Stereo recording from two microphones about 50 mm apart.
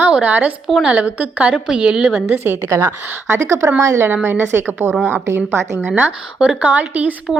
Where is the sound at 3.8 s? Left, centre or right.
Right.